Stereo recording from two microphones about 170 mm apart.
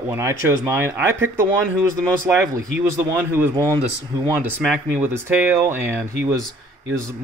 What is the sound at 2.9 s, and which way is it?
Speech, 15° right (ahead or behind).